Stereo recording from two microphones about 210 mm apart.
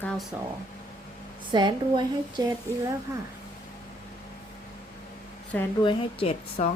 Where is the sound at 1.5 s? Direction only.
20° right (ahead or behind).